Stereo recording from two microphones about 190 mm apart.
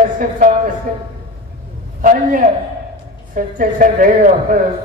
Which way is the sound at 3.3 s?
45° right (ahead or behind).